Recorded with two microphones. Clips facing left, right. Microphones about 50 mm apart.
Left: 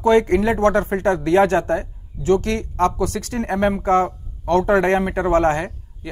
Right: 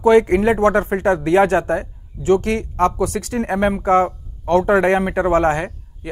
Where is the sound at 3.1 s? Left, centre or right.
Right.